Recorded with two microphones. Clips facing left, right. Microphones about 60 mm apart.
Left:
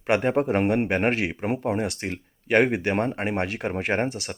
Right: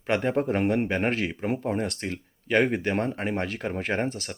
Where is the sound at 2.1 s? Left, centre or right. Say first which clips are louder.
Left 3 dB; left.